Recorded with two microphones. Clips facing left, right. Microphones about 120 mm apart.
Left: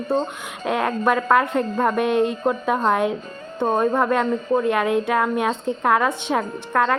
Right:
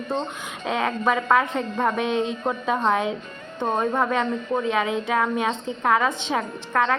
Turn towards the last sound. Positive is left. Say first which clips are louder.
# left 2 dB
turn(degrees=5)  # may be behind; listen again after turning